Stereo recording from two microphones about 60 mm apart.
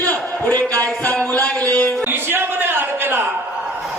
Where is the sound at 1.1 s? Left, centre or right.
Left.